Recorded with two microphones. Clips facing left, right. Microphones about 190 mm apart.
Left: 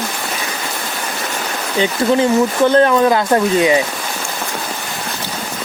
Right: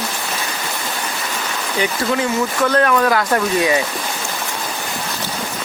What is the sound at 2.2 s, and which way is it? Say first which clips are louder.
Speech: left 6 dB; 30° left (ahead or behind).